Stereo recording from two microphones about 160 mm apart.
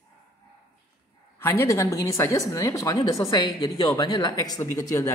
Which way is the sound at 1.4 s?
20° left (ahead or behind).